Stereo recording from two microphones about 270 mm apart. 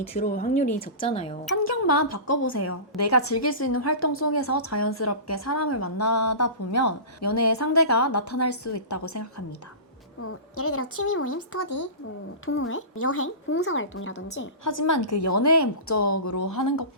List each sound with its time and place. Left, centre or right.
0.1 s speech: left
1.5 s a woman's voice: left
10.2 s speech: left
14.9 s a woman's voice: left